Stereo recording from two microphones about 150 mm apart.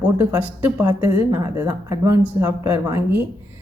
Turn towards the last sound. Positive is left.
turn(degrees=-15)  # may be behind; listen again after turning